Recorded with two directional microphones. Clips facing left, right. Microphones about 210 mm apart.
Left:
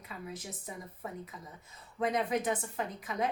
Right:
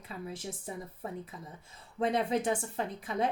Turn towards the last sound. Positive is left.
turn(degrees=-30)  # may be behind; listen again after turning